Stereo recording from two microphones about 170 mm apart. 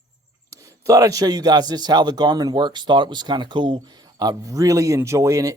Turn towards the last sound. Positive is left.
turn(degrees=-20)  # may be behind; listen again after turning